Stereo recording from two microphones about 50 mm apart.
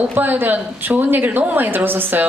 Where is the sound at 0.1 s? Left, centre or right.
Right.